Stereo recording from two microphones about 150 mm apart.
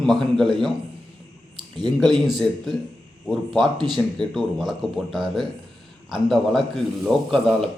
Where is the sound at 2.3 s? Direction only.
Centre (ahead or behind).